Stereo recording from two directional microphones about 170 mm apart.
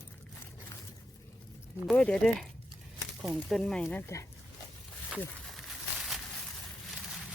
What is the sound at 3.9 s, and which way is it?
Speech, 15° left (ahead or behind).